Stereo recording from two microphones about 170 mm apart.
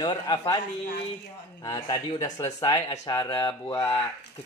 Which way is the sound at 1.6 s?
25° left (ahead or behind).